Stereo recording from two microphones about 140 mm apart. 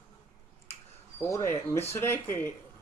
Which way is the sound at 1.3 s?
20° left (ahead or behind).